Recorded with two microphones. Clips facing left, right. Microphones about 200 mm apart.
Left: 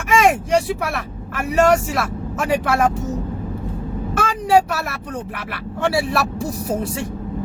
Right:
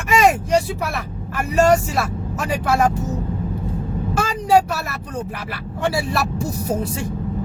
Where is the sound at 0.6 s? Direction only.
75° left (ahead or behind).